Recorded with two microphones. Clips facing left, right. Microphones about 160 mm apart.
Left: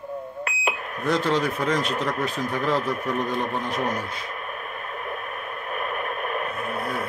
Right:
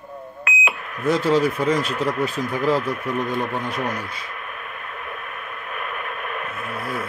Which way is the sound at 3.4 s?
30° left (ahead or behind).